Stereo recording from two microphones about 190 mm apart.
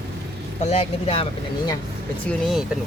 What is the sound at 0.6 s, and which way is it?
Speech, 35° left (ahead or behind).